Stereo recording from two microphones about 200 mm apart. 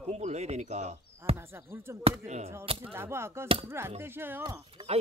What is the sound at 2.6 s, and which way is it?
Speech, 25° right (ahead or behind).